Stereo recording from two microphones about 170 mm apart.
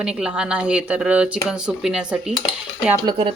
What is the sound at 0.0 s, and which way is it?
A woman's voice, 5° right (ahead or behind).